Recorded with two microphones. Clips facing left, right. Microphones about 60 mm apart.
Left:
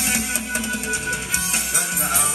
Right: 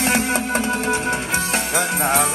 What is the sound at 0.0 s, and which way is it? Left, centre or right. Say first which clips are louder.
Music: right 6 dB; right.